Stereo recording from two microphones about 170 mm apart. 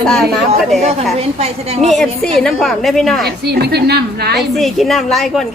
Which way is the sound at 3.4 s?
70° right (ahead or behind).